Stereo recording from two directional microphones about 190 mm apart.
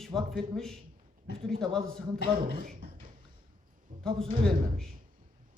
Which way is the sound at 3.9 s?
40° right (ahead or behind).